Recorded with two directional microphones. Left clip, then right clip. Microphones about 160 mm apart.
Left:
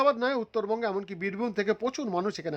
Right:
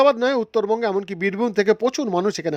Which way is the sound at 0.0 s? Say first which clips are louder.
Right 8 dB; 35° right (ahead or behind).